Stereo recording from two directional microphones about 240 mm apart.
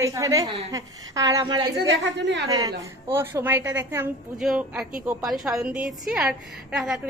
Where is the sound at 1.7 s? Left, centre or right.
Right.